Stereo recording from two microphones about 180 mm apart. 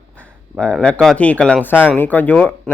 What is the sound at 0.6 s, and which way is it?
Speech, 5° left (ahead or behind).